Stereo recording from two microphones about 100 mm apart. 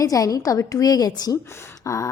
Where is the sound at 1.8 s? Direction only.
30° left (ahead or behind).